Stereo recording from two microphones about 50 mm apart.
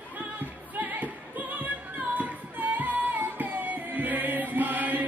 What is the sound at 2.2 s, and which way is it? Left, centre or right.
Music, right.